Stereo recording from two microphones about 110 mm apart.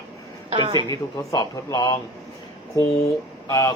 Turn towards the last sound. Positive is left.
turn(degrees=30)  # may be behind; listen again after turning